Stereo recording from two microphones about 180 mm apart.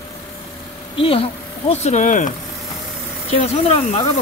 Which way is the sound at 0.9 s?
30° left (ahead or behind).